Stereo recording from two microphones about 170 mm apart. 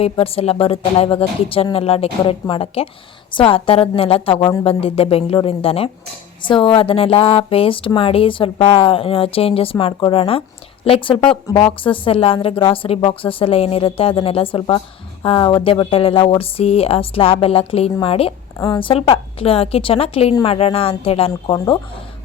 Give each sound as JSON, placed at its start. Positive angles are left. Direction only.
{"t": 0.0, "sound": "speech", "side_deg": 35}
{"t": 21.5, "sound": "speech", "side_deg": 20}